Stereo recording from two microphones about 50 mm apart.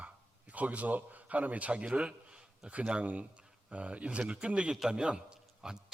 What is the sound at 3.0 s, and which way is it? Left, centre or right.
A man's voice, right.